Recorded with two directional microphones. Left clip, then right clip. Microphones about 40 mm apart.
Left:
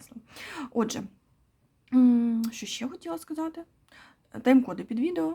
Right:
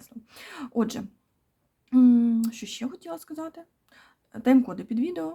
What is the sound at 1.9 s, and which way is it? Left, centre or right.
Speech, left.